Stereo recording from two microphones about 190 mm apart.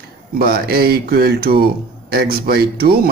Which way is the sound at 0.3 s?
50° right (ahead or behind).